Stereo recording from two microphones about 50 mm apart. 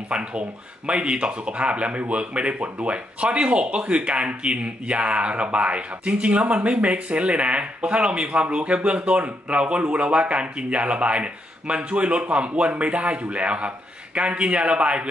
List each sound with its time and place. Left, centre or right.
0.1 s speech: right